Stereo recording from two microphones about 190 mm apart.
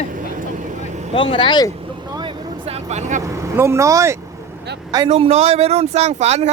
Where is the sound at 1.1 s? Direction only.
25° left (ahead or behind).